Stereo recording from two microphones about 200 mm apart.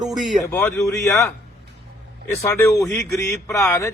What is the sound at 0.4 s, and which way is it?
Speech, 15° left (ahead or behind).